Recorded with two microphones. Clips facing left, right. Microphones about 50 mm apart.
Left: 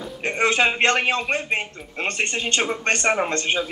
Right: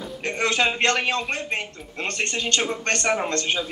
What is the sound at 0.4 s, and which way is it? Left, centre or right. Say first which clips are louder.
Speech: left 3 dB; left.